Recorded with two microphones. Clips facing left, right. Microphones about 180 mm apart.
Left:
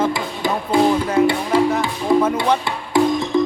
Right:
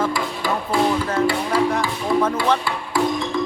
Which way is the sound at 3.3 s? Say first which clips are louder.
Left 8 dB; 20° left (ahead or behind).